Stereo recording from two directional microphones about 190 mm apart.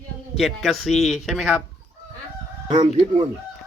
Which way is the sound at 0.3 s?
Centre (ahead or behind).